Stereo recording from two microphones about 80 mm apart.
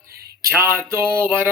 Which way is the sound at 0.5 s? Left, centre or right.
Right.